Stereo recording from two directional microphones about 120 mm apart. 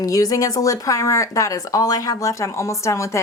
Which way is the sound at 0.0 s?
30° left (ahead or behind).